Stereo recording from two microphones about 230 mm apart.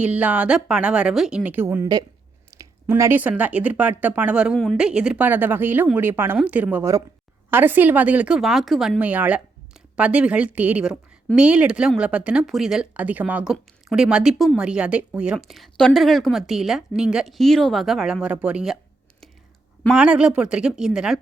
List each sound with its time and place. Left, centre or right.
0.0 s speech: centre
19.8 s speech: centre